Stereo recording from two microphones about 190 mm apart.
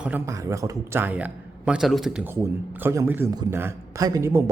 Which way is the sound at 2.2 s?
10° right (ahead or behind).